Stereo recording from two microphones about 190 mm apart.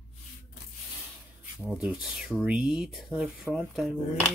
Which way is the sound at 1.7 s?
5° right (ahead or behind).